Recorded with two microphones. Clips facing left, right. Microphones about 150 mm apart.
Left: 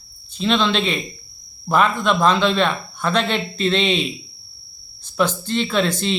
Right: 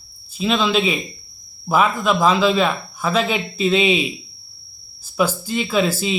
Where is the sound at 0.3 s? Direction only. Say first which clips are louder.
Right 1 dB; 5° right (ahead or behind).